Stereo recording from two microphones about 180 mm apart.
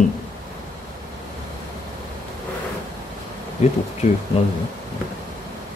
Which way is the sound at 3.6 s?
40° left (ahead or behind).